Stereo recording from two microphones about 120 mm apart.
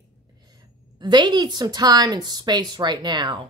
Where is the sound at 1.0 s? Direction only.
40° right (ahead or behind).